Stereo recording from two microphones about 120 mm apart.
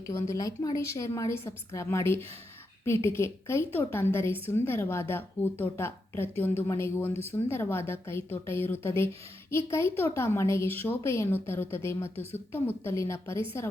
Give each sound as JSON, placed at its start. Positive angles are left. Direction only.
{"t": 0.1, "sound": "a woman's voice", "side_deg": 25}